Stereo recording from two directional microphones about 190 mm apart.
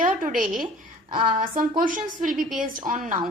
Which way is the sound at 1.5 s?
45° right (ahead or behind).